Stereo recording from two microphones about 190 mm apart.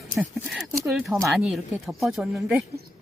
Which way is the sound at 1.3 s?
Centre (ahead or behind).